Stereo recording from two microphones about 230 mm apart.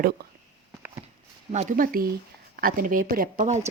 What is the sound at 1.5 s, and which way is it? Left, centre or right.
A woman's voice, right.